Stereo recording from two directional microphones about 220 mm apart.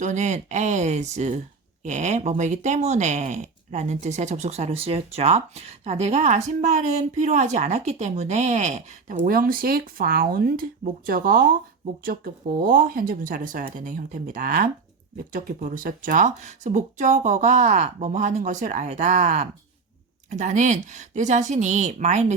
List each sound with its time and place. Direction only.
0.0 s speech: 35° right (ahead or behind)